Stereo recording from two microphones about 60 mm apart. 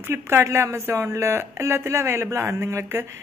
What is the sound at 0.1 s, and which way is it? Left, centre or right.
A woman's voice, right.